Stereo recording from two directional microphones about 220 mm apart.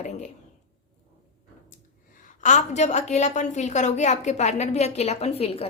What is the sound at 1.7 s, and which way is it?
A woman's voice, 35° left (ahead or behind).